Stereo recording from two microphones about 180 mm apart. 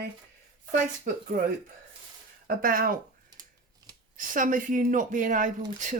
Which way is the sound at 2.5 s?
50° right (ahead or behind).